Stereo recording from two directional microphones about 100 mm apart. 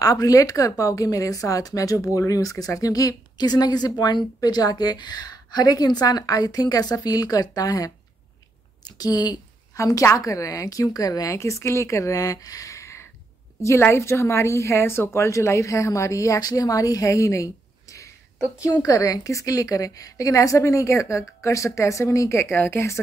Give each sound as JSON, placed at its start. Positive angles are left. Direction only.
{"t": 0.0, "sound": "a woman's voice", "side_deg": 35}
{"t": 9.8, "sound": "a woman's voice", "side_deg": 30}